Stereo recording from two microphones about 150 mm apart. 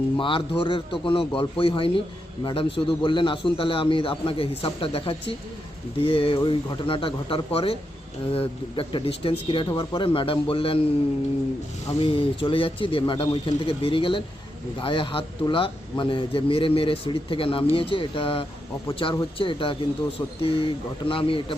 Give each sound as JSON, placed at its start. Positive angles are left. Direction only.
{"t": 0.2, "sound": "a man's voice", "side_deg": 35}
{"t": 11.9, "sound": "a man's voice", "side_deg": 35}